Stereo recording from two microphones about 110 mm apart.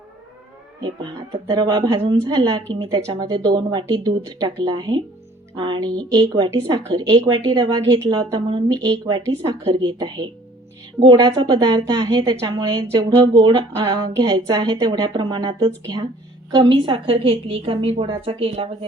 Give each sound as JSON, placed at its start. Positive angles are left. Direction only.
{"t": 1.5, "sound": "a woman's voice", "side_deg": -40}